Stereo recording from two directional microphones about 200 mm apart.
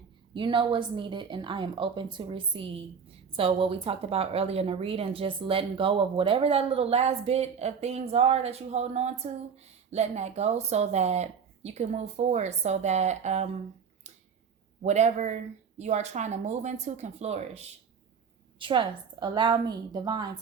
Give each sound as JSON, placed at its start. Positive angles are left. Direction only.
{"t": 0.3, "sound": "speech", "side_deg": -25}
{"t": 14.8, "sound": "speech", "side_deg": -35}